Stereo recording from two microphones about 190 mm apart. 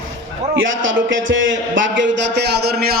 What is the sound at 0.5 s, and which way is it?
A man's voice, 80° right.